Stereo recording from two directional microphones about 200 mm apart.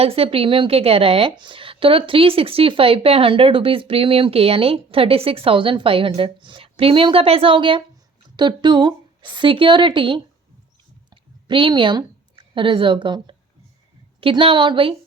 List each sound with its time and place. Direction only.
0.0 s a woman's voice: 30° right (ahead or behind)
11.1 s a sound: 25° right (ahead or behind)
12.5 s a woman's voice: 25° right (ahead or behind)